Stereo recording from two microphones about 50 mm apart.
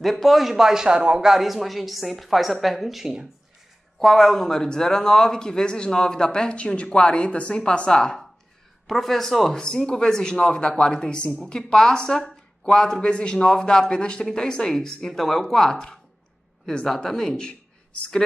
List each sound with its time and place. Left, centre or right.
0.0 s speech: centre
8.8 s speech: centre